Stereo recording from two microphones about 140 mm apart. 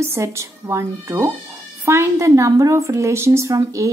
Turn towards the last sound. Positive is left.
turn(degrees=-20)  # may be behind; listen again after turning